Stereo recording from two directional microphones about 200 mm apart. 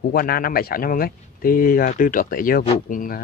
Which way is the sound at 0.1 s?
45° left (ahead or behind).